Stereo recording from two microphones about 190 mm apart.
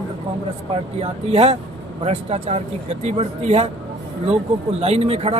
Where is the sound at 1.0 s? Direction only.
30° right (ahead or behind).